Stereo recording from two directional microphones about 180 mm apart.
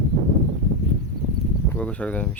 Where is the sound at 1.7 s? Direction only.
5° left (ahead or behind).